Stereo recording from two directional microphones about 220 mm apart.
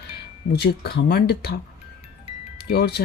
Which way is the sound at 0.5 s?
45° left (ahead or behind).